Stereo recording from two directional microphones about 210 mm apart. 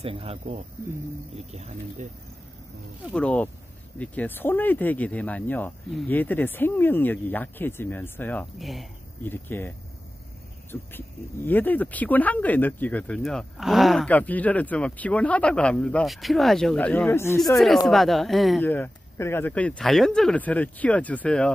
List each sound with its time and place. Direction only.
0.0 s speech: 30° right (ahead or behind)
3.1 s speech: 5° left (ahead or behind)
17.8 s speech: centre (ahead or behind)